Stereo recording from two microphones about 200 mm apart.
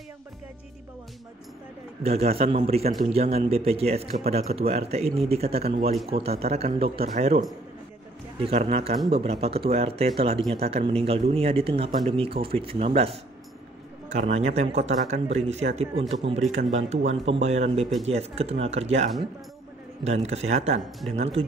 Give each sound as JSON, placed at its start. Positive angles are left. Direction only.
{"t": 2.0, "sound": "speech", "side_deg": -30}